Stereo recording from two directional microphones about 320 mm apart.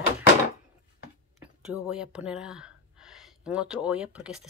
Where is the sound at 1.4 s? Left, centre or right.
Centre.